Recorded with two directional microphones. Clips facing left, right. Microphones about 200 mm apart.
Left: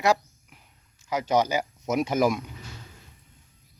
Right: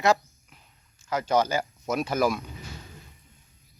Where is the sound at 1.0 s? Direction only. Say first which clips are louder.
Even; 15° left (ahead or behind).